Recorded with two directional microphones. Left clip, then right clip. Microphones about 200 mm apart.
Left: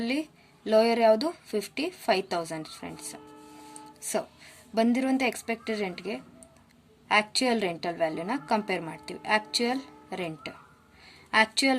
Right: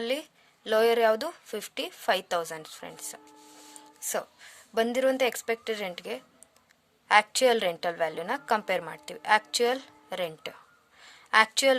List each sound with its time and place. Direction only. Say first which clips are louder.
0.0 s speech: even; 40° right (ahead or behind)
4.4 s a woman's voice: left 1 dB; 45° right (ahead or behind)
11.0 s a sound: right 2 dB; 40° right (ahead or behind)